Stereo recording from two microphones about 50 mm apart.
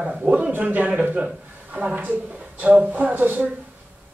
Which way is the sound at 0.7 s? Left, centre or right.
Right.